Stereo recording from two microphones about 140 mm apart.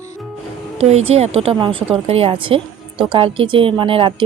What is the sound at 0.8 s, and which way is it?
A woman's voice, 50° right (ahead or behind).